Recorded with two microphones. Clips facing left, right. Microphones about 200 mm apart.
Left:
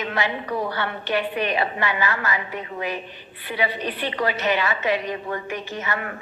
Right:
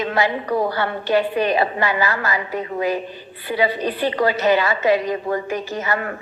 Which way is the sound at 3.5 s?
40° right (ahead or behind).